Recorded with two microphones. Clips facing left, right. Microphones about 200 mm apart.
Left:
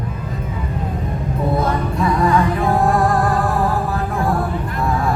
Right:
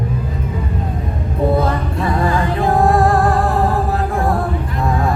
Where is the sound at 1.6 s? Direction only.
30° right (ahead or behind).